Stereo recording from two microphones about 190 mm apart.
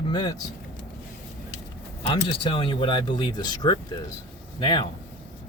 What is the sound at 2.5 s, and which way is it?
Speech, 25° left (ahead or behind).